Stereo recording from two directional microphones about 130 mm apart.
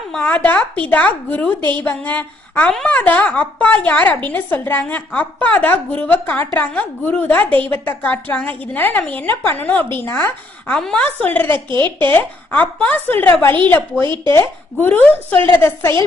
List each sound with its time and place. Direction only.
0.1 s a woman's voice: 10° left (ahead or behind)
10.7 s a woman's voice: 5° left (ahead or behind)
14.8 s a woman's voice: 15° left (ahead or behind)